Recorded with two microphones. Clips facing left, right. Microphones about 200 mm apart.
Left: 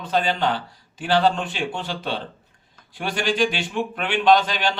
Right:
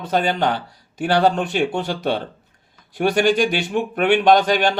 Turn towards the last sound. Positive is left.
turn(degrees=-50)  # may be behind; listen again after turning